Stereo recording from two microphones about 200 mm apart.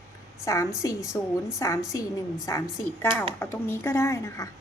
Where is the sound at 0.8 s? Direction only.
15° left (ahead or behind).